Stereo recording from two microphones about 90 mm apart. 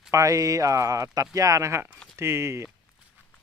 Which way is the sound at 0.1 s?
35° right (ahead or behind).